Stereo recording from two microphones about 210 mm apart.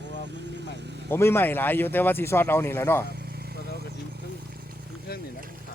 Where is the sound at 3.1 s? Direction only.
50° right (ahead or behind).